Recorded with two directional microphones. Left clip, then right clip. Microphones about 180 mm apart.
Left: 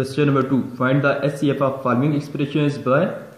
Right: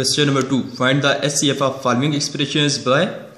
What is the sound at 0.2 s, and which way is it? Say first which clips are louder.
A man's voice: right 1 dB; 20° right (ahead or behind).